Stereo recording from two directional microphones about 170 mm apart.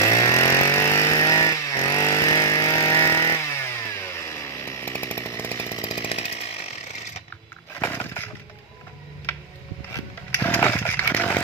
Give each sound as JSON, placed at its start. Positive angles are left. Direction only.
{"t": 0.0, "sound": "chainsaw", "side_deg": 20}
{"t": 6.1, "sound": "chainsaw", "side_deg": 35}
{"t": 7.8, "sound": "chainsaw", "side_deg": 10}
{"t": 10.4, "sound": "chainsaw", "side_deg": 10}